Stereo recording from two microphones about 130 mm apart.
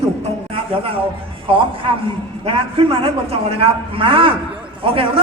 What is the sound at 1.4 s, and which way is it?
A man's voice, 45° right (ahead or behind).